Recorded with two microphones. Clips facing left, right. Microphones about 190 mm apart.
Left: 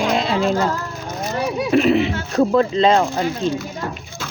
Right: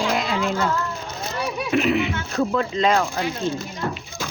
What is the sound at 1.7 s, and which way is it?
Speech, 35° left (ahead or behind).